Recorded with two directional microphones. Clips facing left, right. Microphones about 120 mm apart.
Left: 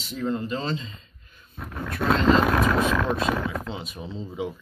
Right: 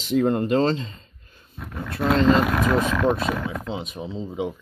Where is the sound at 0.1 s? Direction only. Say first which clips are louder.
Right 8 dB; 60° right (ahead or behind); by 0.9 s 45° right (ahead or behind).